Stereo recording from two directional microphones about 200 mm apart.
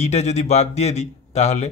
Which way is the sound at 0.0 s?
35° left (ahead or behind).